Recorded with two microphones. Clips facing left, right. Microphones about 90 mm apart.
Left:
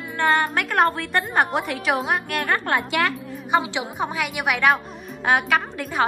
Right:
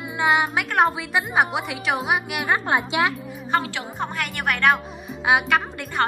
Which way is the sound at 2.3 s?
15° right (ahead or behind).